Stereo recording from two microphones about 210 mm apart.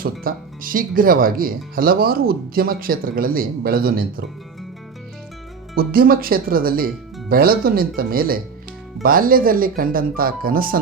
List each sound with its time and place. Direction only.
0.0 s speech: 45° right (ahead or behind)
5.7 s speech: 45° right (ahead or behind)